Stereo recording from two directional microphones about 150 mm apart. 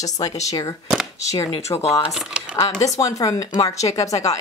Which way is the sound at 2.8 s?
20° left (ahead or behind).